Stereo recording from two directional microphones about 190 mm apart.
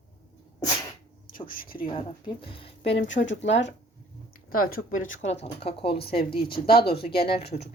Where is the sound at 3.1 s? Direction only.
75° left (ahead or behind).